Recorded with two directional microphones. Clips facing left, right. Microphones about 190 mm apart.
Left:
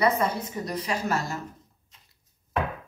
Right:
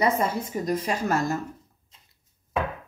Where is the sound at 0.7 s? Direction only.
50° right (ahead or behind).